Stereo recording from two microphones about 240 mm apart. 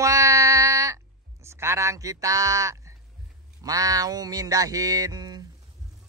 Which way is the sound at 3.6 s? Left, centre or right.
Centre.